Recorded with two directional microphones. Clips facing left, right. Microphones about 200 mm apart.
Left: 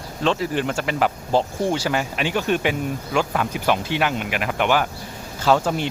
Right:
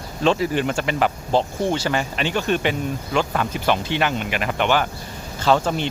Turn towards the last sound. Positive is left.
turn(degrees=5)  # may be behind; listen again after turning